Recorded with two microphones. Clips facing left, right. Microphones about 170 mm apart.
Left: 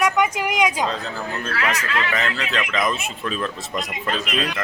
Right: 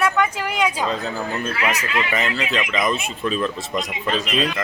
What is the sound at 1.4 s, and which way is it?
Speech, 10° right (ahead or behind).